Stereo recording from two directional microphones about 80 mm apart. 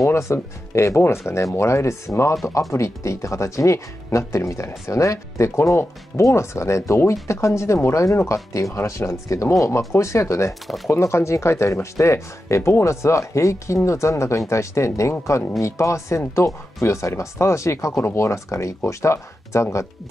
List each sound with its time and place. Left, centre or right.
0.0 s speech: left